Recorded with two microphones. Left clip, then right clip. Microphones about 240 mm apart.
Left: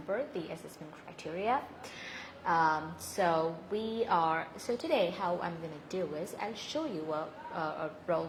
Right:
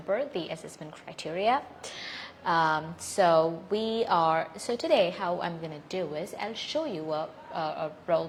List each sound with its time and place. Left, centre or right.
0.1 s a woman's voice: right
2.0 s a sound: right
5.9 s a woman's voice: right